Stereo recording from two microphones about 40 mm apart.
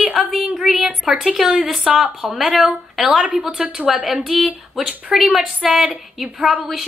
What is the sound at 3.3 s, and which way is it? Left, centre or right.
A woman's voice, centre.